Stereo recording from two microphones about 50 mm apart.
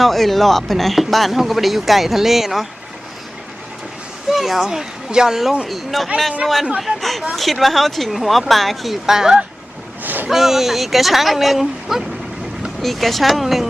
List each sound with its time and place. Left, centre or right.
0.0 s speech: centre
4.3 s speech: centre
10.0 s boat: right
10.2 s speech: centre